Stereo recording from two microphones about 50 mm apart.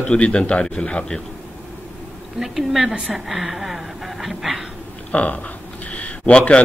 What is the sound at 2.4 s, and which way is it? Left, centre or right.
Speech, centre.